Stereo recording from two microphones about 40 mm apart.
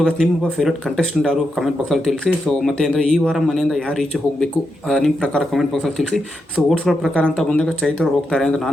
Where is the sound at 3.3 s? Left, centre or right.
Centre.